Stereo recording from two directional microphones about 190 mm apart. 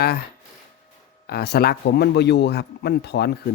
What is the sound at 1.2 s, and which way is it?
Speech, 55° left (ahead or behind).